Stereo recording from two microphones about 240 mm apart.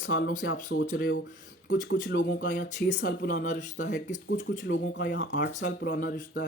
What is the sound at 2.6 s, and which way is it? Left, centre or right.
Speech, left.